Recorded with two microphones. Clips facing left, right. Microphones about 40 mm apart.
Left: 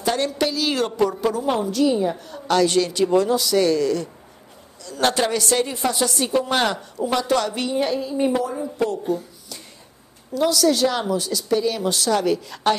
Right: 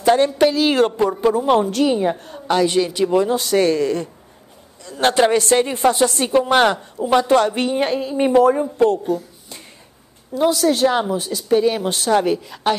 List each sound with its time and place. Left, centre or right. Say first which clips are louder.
0.0 s a woman's voice: right 7 dB; right
2.3 s a woman's voice: even; centre
3.3 s a woman's voice: right 2 dB; right
10.3 s a woman's voice: right 2 dB; right
12.4 s a woman's voice: right 1 dB; centre